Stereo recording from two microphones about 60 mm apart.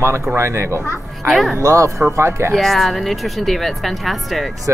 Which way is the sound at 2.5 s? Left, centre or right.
Centre.